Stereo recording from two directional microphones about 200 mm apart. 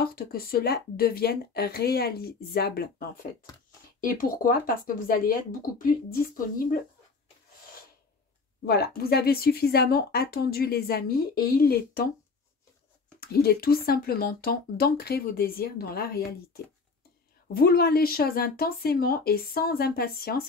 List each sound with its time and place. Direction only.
0.0 s speech: 50° left (ahead or behind)
8.6 s speech: 50° left (ahead or behind)
13.2 s speech: 50° left (ahead or behind)
17.6 s speech: 50° left (ahead or behind)